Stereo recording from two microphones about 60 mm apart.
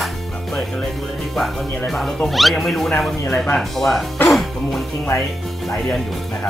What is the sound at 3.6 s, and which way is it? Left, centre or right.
Speech, centre.